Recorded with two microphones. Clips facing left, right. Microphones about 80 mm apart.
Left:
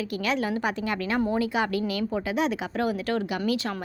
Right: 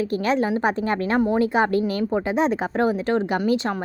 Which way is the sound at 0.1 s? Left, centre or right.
Right.